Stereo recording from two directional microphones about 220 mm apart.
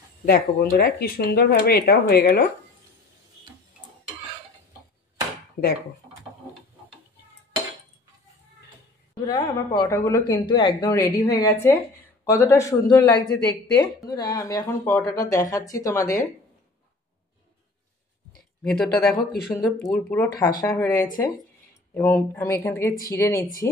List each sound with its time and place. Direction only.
0.2 s speech: 45° left (ahead or behind)
9.2 s speech: 15° left (ahead or behind)
18.6 s speech: 5° left (ahead or behind)